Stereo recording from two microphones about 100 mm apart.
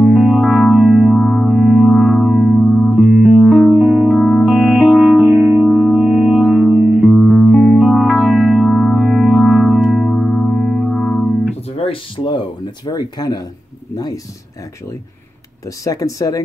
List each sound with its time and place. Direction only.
0.0 s music: 5° right (ahead or behind)
3.8 s music: 15° right (ahead or behind)
4.2 s music: centre (ahead or behind)
4.5 s music: 10° right (ahead or behind)
11.7 s a sound: 65° left (ahead or behind); by 13.5 s 45° left (ahead or behind)
13.9 s speech: 40° left (ahead or behind)
15.8 s speech: 35° left (ahead or behind)